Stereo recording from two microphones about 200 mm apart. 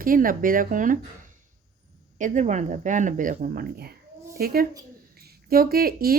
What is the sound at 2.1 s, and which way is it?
A woman's voice, 40° right (ahead or behind).